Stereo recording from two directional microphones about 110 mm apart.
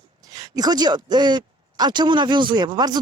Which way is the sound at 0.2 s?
35° right (ahead or behind).